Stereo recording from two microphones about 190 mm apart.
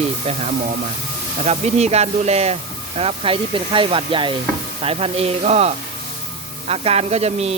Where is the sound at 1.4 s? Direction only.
35° right (ahead or behind).